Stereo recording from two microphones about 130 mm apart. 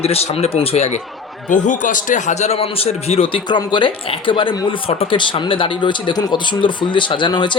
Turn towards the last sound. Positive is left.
turn(degrees=40)  # may be behind; listen again after turning